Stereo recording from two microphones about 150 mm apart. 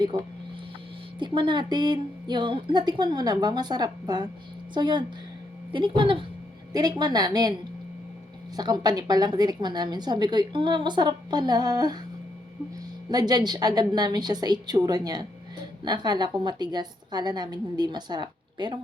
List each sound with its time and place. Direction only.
0.1 s a woman's voice: 30° right (ahead or behind)
8.5 s a woman's voice: 25° right (ahead or behind)
13.1 s a woman's voice: 25° right (ahead or behind)